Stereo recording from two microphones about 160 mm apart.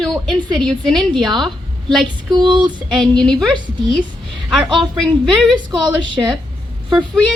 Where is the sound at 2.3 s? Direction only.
30° right (ahead or behind).